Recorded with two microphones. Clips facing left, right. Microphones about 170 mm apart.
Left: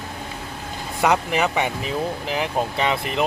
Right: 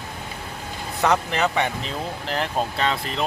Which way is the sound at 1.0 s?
10° left (ahead or behind).